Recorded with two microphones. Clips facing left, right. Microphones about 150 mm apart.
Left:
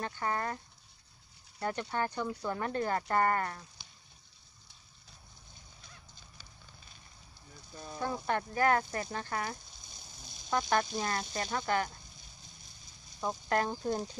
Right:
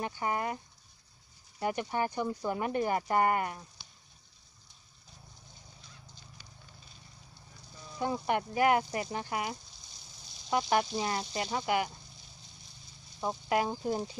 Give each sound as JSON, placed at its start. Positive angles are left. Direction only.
{"t": 0.0, "sound": "speech", "side_deg": -15}
{"t": 1.6, "sound": "speech", "side_deg": -15}
{"t": 7.7, "sound": "a sound", "side_deg": 55}
{"t": 8.0, "sound": "speech", "side_deg": -15}
{"t": 13.2, "sound": "speech", "side_deg": -10}